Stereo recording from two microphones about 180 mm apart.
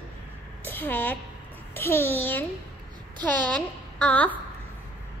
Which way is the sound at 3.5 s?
5° left (ahead or behind).